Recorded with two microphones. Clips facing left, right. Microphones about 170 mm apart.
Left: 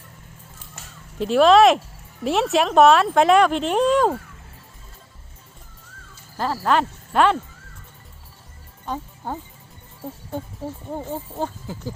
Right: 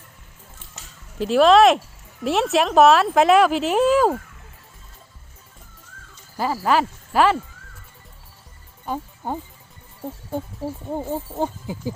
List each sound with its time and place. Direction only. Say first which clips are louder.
0.8 s a sound: left 3 dB; 55° left (ahead or behind)
1.2 s speech: even; centre (ahead or behind)
6.3 s speech: right 1 dB; 5° right (ahead or behind)
8.9 s speech: right 2 dB; 15° right (ahead or behind)